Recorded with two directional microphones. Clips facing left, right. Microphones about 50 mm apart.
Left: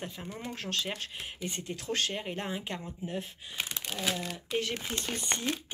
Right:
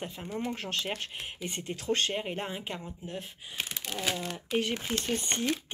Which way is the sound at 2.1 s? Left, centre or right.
Centre.